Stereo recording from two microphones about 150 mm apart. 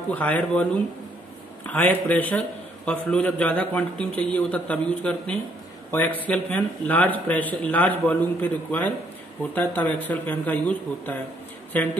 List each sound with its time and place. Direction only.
0.1 s a man's voice: 10° left (ahead or behind)
1.7 s a man's voice: 10° left (ahead or behind)